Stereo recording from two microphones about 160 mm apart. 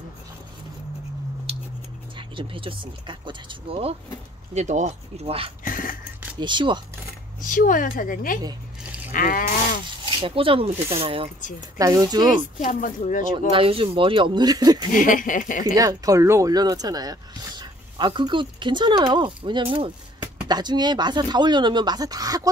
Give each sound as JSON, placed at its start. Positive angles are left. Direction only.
{"t": 2.1, "sound": "speech", "side_deg": -30}
{"t": 4.6, "sound": "speech", "side_deg": -45}
{"t": 5.6, "sound": "a sound", "side_deg": 60}
{"t": 6.4, "sound": "speech", "side_deg": -30}
{"t": 7.4, "sound": "a woman's voice", "side_deg": 55}
{"t": 9.1, "sound": "a sound", "side_deg": 60}
{"t": 10.0, "sound": "speech", "side_deg": -35}
{"t": 11.8, "sound": "speech", "side_deg": -20}
{"t": 12.5, "sound": "a woman's voice", "side_deg": 55}
{"t": 13.5, "sound": "speech", "side_deg": -35}
{"t": 15.0, "sound": "a woman's voice", "side_deg": 55}
{"t": 15.6, "sound": "speech", "side_deg": -20}